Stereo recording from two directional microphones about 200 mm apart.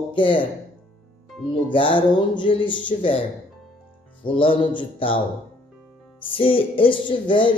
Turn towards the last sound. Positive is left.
turn(degrees=25)  # may be behind; listen again after turning